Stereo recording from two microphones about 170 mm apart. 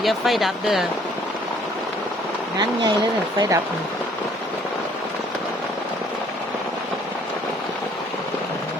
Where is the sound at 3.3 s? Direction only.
20° right (ahead or behind).